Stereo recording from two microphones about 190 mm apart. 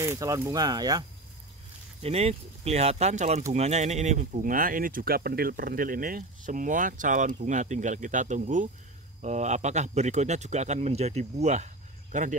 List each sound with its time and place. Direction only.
0.0 s speech: 15° right (ahead or behind)
2.0 s speech: 30° right (ahead or behind)